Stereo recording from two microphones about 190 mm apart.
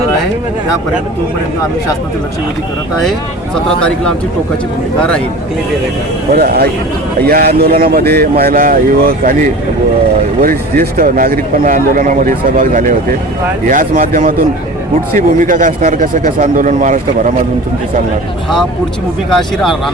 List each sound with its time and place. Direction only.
3.8 s speech: 5° left (ahead or behind)
6.3 s speech: 55° right (ahead or behind)
10.8 s speech: 50° right (ahead or behind)
19.3 s speech: centre (ahead or behind)